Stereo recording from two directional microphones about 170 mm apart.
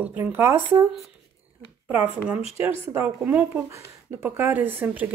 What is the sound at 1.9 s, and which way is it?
Speech, 10° right (ahead or behind).